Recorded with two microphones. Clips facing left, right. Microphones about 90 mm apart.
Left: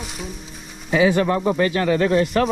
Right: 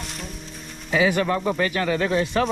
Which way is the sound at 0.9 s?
30° left (ahead or behind).